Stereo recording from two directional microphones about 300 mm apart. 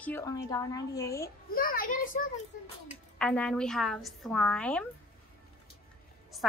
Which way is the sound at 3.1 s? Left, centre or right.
Centre.